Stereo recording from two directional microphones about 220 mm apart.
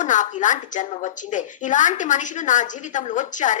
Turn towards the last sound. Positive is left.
turn(degrees=35)  # may be behind; listen again after turning